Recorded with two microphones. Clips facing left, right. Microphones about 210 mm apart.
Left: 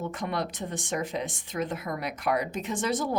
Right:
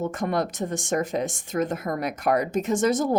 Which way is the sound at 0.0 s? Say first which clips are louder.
Right 6 dB; 45° right (ahead or behind).